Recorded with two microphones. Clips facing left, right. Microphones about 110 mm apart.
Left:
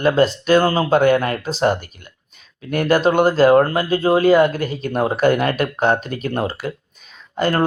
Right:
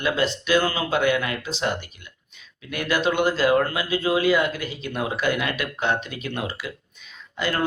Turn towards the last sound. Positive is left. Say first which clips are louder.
# left 7 dB
turn(degrees=45)  # may be behind; listen again after turning